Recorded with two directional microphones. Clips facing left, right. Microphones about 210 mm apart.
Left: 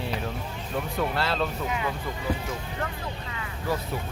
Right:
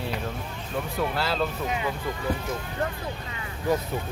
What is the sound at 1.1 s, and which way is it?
Speech, centre (ahead or behind).